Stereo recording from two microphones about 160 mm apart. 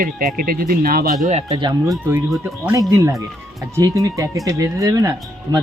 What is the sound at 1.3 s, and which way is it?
Speech, 40° right (ahead or behind).